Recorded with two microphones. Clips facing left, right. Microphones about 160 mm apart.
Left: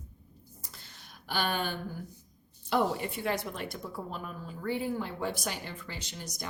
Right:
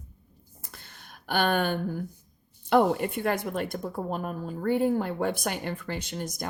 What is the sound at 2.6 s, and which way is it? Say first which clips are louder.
A woman's voice: right 7 dB; 55° right (ahead or behind).